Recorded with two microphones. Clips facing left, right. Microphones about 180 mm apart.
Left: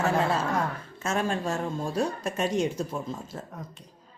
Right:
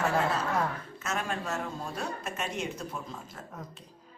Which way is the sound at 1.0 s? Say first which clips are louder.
Left 6 dB; 30° left (ahead or behind).